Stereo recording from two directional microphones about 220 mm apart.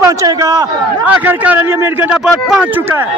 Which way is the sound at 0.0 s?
15° right (ahead or behind).